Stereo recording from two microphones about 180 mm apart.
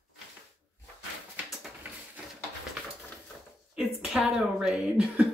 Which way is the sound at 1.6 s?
10° right (ahead or behind).